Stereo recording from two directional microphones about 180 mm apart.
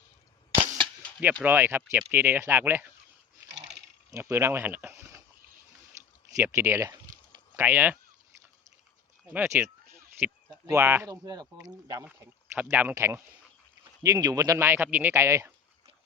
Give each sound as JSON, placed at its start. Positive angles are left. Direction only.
{"t": 1.2, "sound": "speech", "side_deg": -5}
{"t": 4.1, "sound": "speech", "side_deg": -15}
{"t": 6.4, "sound": "speech", "side_deg": -15}
{"t": 9.3, "sound": "speech", "side_deg": -10}